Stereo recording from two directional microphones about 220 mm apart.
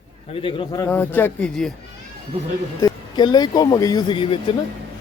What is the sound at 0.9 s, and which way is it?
Speech, 10° left (ahead or behind).